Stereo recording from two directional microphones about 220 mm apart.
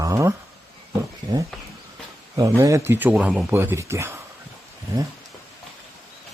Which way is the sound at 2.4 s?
15° right (ahead or behind).